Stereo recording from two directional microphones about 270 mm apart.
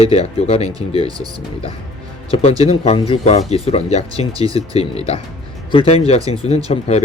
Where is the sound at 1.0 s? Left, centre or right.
Centre.